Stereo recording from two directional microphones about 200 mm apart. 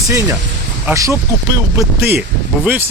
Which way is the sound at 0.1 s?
15° right (ahead or behind).